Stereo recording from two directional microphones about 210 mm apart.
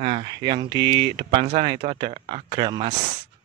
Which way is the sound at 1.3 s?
25° right (ahead or behind).